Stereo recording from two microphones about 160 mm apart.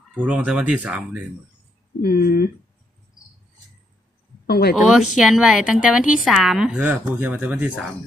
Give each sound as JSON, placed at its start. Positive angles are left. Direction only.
{"t": 0.2, "sound": "speech", "side_deg": -10}
{"t": 2.0, "sound": "speech", "side_deg": 70}
{"t": 4.4, "sound": "speech", "side_deg": 80}
{"t": 4.7, "sound": "speech", "side_deg": -5}